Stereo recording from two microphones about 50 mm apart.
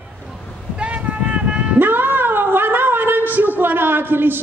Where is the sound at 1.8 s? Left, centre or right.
Right.